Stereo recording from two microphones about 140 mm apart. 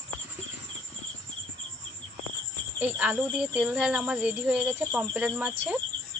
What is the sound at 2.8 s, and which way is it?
Speech, 10° right (ahead or behind).